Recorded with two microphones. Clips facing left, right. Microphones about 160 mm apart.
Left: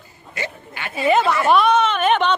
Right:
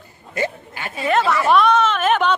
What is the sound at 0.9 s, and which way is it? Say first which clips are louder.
Speech: left 1 dB; centre (ahead or behind).